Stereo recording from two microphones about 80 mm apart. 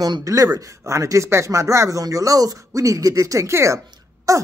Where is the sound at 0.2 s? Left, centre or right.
Right.